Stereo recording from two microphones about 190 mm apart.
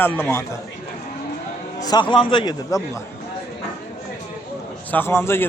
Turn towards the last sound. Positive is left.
turn(degrees=10)  # may be behind; listen again after turning